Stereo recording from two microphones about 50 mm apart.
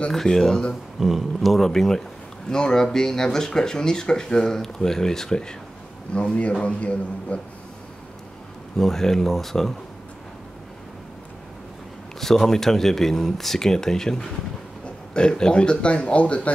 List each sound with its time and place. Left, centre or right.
0.1 s speech: centre
0.9 s speech: centre; by 7.3 s left
8.7 s speech: centre
12.2 s speech: centre; by 16.5 s left